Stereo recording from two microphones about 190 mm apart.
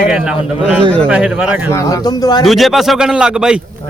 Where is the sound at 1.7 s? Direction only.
15° left (ahead or behind).